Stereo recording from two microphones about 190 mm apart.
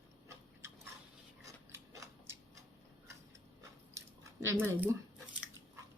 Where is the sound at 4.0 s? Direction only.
15° right (ahead or behind).